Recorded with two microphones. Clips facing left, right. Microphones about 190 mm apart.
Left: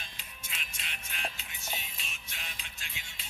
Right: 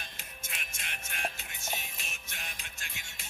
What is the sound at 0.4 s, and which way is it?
Music, 50° right (ahead or behind).